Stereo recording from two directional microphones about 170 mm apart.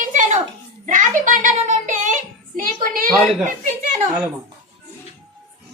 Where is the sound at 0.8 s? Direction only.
50° right (ahead or behind).